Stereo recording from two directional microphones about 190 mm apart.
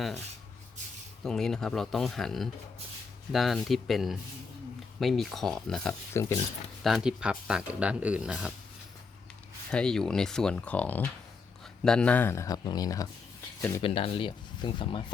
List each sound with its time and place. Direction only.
1.2 s speech: 5° left (ahead or behind)
6.1 s speech: 15° left (ahead or behind)
6.8 s speech: centre (ahead or behind)
9.7 s speech: 5° left (ahead or behind)
13.8 s speech: 30° left (ahead or behind)